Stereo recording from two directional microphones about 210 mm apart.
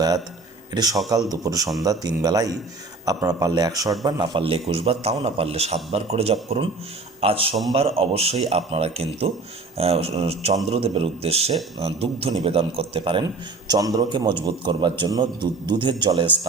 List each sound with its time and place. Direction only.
0.7 s a man's voice: 20° right (ahead or behind)